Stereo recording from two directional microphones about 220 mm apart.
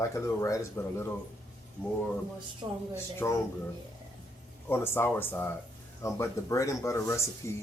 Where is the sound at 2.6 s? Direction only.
20° right (ahead or behind).